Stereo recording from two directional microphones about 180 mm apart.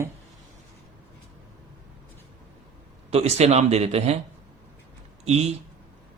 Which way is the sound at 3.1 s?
35° right (ahead or behind).